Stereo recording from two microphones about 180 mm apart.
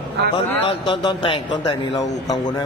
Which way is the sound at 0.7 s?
25° left (ahead or behind).